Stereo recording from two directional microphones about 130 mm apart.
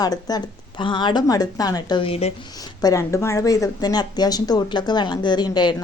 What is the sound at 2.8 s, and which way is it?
Speech, 25° left (ahead or behind).